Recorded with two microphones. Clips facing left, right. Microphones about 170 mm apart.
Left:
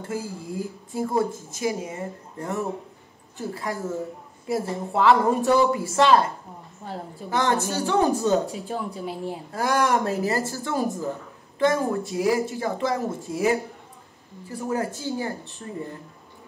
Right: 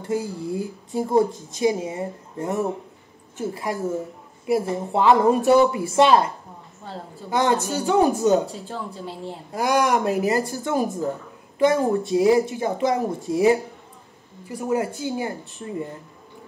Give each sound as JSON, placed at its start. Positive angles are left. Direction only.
{"t": 0.0, "sound": "speech", "side_deg": -20}
{"t": 8.5, "sound": "speech", "side_deg": 15}
{"t": 9.5, "sound": "speech", "side_deg": -15}